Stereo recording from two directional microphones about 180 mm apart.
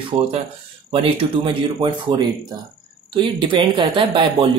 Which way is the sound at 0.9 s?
30° right (ahead or behind).